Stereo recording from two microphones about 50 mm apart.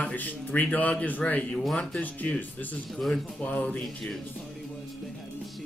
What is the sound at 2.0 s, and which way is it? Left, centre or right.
Speech, left.